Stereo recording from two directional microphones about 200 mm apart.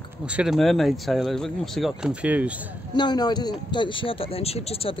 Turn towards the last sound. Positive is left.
turn(degrees=30)  # may be behind; listen again after turning